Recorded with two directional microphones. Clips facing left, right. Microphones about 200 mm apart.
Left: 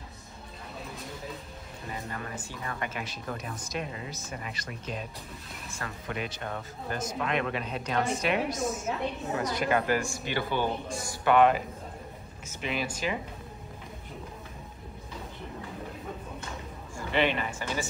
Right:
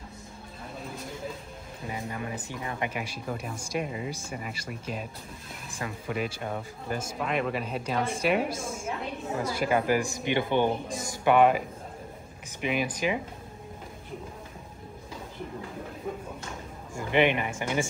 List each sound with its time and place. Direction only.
1.9 s speech: 10° right (ahead or behind)
8.5 s a woman's voice: 30° right (ahead or behind)
9.4 s speech: 5° right (ahead or behind)
16.9 s speech: 15° right (ahead or behind)